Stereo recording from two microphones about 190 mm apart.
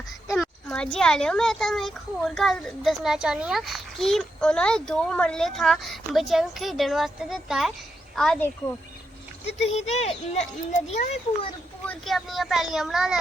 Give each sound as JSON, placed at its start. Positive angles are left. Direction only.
{"t": 0.3, "sound": "a child's voice", "side_deg": 0}
{"t": 9.5, "sound": "speech", "side_deg": 35}
{"t": 11.9, "sound": "a child's voice", "side_deg": 0}